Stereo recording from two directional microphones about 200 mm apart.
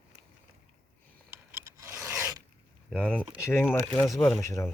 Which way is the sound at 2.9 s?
5° left (ahead or behind).